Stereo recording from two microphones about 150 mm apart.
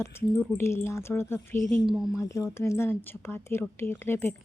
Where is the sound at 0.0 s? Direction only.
15° left (ahead or behind).